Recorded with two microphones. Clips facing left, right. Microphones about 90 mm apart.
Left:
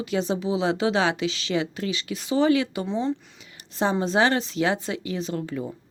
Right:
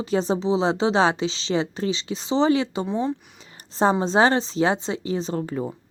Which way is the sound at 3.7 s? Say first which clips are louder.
Right 3 dB; 30° right (ahead or behind).